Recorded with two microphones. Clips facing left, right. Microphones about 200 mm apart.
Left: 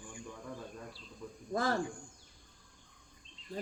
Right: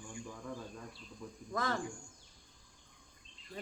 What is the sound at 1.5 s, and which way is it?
Cricket, 30° left (ahead or behind).